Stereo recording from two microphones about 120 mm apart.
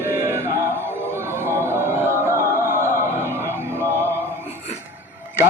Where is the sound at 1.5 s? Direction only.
20° right (ahead or behind).